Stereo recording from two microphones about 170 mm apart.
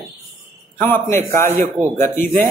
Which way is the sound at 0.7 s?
10° left (ahead or behind).